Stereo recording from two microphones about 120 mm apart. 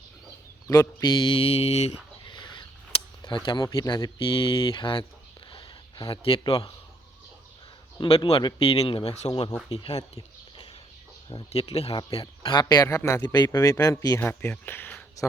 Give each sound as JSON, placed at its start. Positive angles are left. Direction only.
{"t": 0.7, "sound": "speech", "side_deg": 30}
{"t": 2.2, "sound": "speech", "side_deg": 40}
{"t": 5.5, "sound": "a sound", "side_deg": 45}
{"t": 8.0, "sound": "speech", "side_deg": 50}
{"t": 11.5, "sound": "speech", "side_deg": 60}
{"t": 12.4, "sound": "speech", "side_deg": 40}
{"t": 13.0, "sound": "speech", "side_deg": 20}
{"t": 13.2, "sound": "speech", "side_deg": 35}